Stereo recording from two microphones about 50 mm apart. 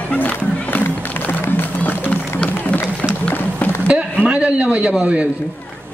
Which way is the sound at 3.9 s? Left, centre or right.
Right.